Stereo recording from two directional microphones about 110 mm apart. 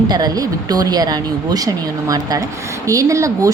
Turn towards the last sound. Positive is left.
turn(degrees=-30)  # may be behind; listen again after turning